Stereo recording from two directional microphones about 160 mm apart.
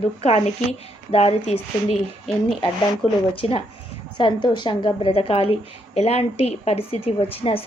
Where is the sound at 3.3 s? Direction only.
35° left (ahead or behind).